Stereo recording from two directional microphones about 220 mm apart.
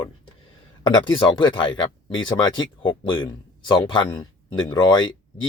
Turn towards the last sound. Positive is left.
turn(degrees=20)  # may be behind; listen again after turning